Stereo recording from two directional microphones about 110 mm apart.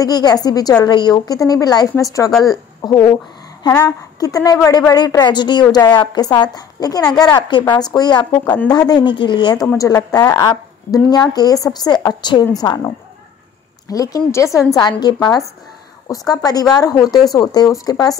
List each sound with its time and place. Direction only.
0.0 s a woman's voice: 35° left (ahead or behind)
9.8 s a woman's voice: 30° left (ahead or behind)